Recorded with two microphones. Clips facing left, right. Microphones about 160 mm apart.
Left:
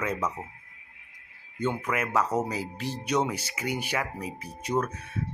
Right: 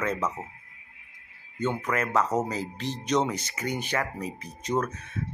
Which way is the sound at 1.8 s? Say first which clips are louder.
Right 3 dB; 10° left (ahead or behind).